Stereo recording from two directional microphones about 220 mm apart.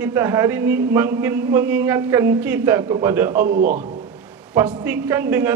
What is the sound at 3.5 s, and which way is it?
Speech, 40° right (ahead or behind).